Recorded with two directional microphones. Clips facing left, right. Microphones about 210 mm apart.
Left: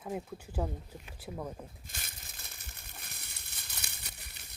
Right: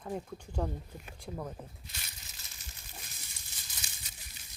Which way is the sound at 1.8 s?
50° left (ahead or behind).